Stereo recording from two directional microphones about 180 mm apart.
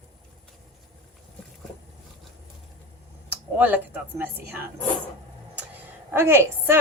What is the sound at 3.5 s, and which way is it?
A woman's voice, 10° right (ahead or behind).